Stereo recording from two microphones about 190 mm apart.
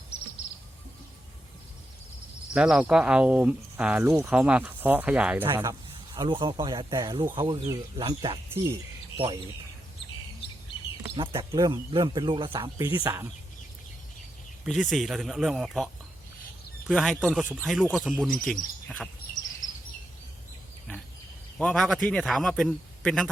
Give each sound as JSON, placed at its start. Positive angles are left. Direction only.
{"t": 2.5, "sound": "speech", "side_deg": -5}
{"t": 6.1, "sound": "speech", "side_deg": -25}
{"t": 11.2, "sound": "speech", "side_deg": -25}
{"t": 14.6, "sound": "a man's voice", "side_deg": -5}
{"t": 21.6, "sound": "a man's voice", "side_deg": 5}